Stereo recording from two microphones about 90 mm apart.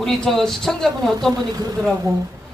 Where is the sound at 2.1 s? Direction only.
40° right (ahead or behind).